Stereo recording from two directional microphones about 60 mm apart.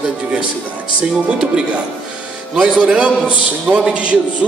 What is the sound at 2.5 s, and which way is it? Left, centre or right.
A man's voice, centre.